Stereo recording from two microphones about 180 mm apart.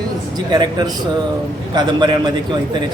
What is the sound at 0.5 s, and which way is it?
Speech, 25° right (ahead or behind).